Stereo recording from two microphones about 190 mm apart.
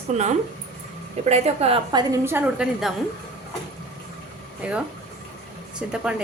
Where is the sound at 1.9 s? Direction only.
15° right (ahead or behind).